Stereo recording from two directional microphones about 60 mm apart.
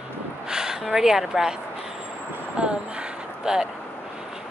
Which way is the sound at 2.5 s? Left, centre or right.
Centre.